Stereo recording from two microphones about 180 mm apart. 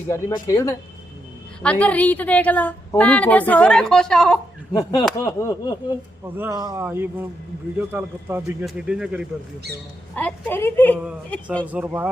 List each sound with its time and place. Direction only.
0.4 s a woman's voice: 15° left (ahead or behind)
4.7 s a woman's voice: 20° left (ahead or behind)
6.2 s a man's voice: 10° right (ahead or behind)
9.7 s a woman's voice: 10° left (ahead or behind)
11.7 s a man's voice: 10° right (ahead or behind)